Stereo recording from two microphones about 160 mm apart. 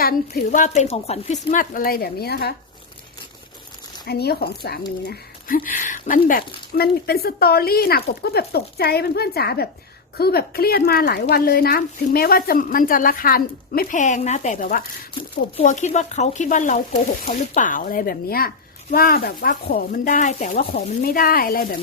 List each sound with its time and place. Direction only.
0.0 s speech: 60° left (ahead or behind); by 2.6 s 80° left
4.0 s speech: 85° left
5.0 s a woman's voice: 60° left (ahead or behind)